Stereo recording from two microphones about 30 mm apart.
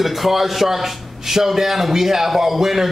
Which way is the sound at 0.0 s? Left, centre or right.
Centre.